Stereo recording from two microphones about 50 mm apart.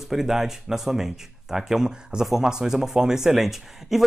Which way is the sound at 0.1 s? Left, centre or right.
Centre.